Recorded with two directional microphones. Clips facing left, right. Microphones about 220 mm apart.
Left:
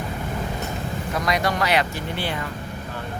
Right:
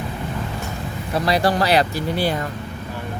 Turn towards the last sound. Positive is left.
turn(degrees=-40)  # may be behind; listen again after turning